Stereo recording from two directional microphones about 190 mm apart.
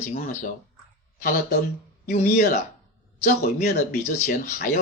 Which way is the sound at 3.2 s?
35° left (ahead or behind).